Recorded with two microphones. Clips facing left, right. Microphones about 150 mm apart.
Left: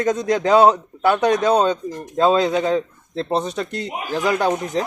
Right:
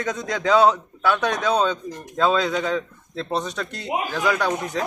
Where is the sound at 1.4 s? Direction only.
45° left (ahead or behind).